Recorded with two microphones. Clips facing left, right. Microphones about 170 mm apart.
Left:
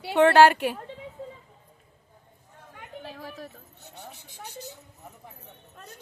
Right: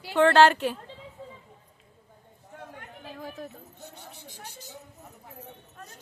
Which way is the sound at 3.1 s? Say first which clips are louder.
Right 5 dB; 5° left (ahead or behind).